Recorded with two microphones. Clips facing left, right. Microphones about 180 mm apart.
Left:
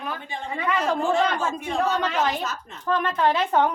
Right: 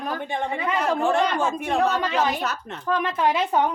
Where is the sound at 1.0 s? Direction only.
60° right (ahead or behind).